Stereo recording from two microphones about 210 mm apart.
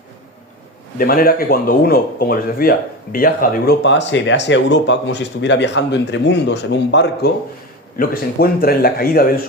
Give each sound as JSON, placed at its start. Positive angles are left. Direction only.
{"t": 0.9, "sound": "a man's voice", "side_deg": 45}